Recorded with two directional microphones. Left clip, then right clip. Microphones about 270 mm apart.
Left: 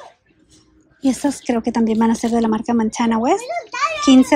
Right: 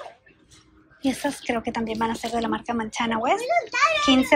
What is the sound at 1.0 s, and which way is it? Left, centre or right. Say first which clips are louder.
Speech: left 6 dB; centre.